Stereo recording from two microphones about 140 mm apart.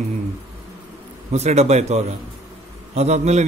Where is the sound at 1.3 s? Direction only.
55° right (ahead or behind).